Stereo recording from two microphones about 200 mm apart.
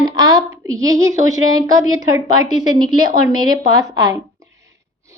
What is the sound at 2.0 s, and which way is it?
A woman's voice, 20° right (ahead or behind).